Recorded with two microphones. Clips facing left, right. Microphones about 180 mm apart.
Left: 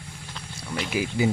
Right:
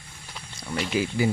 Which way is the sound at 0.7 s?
5° left (ahead or behind).